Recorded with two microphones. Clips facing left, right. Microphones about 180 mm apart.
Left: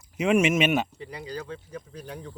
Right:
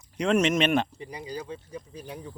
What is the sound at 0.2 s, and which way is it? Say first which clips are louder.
Speech: left 1 dB; 5° left (ahead or behind).